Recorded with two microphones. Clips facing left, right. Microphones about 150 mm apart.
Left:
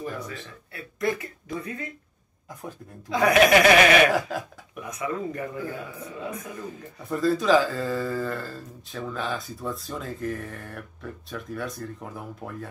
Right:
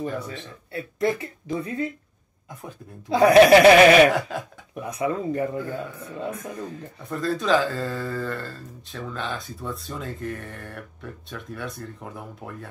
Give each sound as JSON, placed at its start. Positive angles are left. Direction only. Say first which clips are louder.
{"t": 0.0, "sound": "speech", "louder": "right 4 dB", "side_deg": -25}
{"t": 3.1, "sound": "speech", "louder": "right 6 dB", "side_deg": -30}
{"t": 4.1, "sound": "speech", "louder": "even", "side_deg": 0}
{"t": 4.7, "sound": "speech", "louder": "right 4 dB", "side_deg": -30}
{"t": 7.1, "sound": "speech", "louder": "left 2 dB", "side_deg": 0}